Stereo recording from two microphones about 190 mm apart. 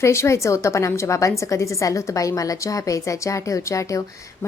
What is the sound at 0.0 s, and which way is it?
A woman's voice, 15° left (ahead or behind).